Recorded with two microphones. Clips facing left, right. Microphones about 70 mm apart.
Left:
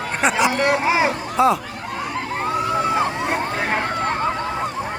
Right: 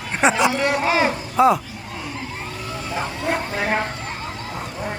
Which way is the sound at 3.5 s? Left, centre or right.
Left.